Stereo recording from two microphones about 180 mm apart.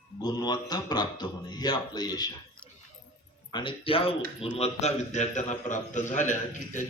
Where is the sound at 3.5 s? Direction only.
30° left (ahead or behind).